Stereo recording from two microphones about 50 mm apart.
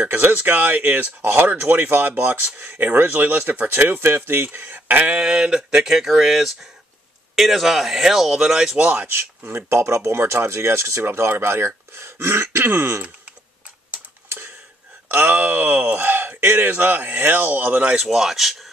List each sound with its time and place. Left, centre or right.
0.1 s speech: right
5.1 s a sound: centre
7.3 s speech: centre
8.7 s speech: right
9.0 s speech: right
9.7 s speech: right
15.0 s speech: right
18.0 s speech: centre